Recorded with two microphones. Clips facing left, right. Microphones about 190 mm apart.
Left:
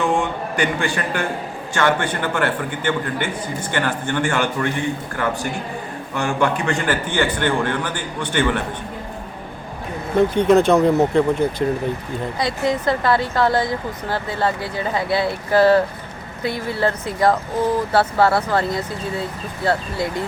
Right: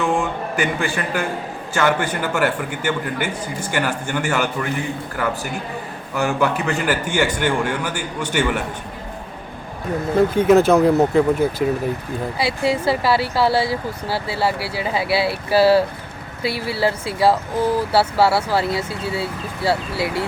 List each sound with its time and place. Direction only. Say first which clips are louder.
0.0 s a man's voice: even; centre (ahead or behind)
10.2 s a man's voice: even; 5° right (ahead or behind)
20.0 s speech: right 1 dB; 75° right (ahead or behind)